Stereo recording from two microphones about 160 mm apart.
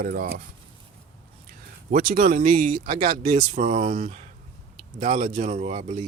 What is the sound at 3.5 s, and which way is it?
Speech, 50° right (ahead or behind).